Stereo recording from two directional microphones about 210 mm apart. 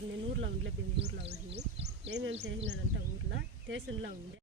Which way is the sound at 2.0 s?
60° right (ahead or behind).